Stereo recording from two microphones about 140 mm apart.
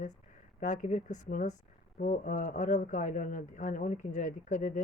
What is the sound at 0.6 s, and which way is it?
Speech, 60° left (ahead or behind).